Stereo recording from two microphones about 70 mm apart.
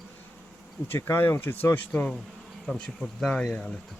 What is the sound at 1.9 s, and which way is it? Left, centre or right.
A woman's voice, centre.